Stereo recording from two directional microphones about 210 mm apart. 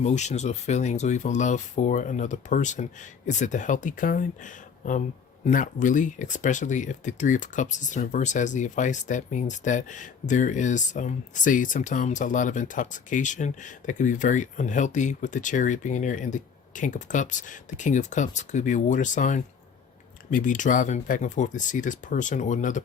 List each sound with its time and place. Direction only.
0.0 s speech: 35° left (ahead or behind)